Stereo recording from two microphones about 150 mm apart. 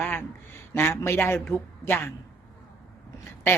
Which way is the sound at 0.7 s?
15° left (ahead or behind).